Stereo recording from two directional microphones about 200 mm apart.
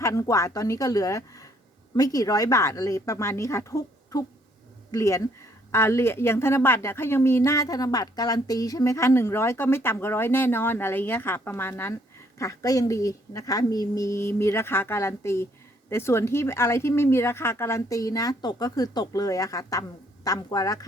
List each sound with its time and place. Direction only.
0.0 s a woman's voice: 15° left (ahead or behind)